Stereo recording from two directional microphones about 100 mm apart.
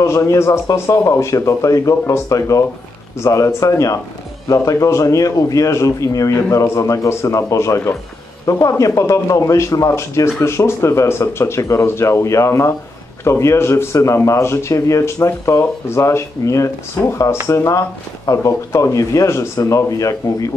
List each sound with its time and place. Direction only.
0.0 s speech: 30° left (ahead or behind)